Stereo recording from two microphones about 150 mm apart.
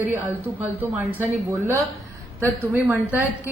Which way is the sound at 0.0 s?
10° right (ahead or behind).